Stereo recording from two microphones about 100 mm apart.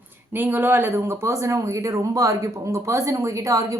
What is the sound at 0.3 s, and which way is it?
A woman's voice, 20° right (ahead or behind).